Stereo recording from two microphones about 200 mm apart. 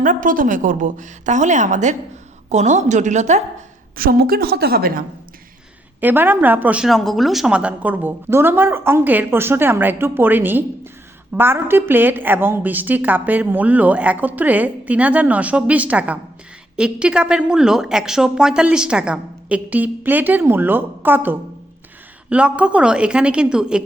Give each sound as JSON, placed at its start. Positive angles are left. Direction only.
{"t": 0.0, "sound": "speech", "side_deg": -40}
{"t": 3.9, "sound": "a woman's voice", "side_deg": -45}
{"t": 6.0, "sound": "a woman's voice", "side_deg": -10}